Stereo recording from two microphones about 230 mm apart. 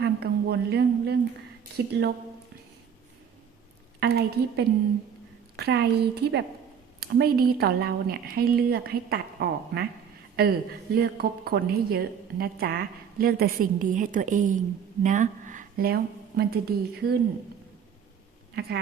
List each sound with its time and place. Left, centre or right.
0.0 s a woman's voice: right
4.0 s a woman's voice: right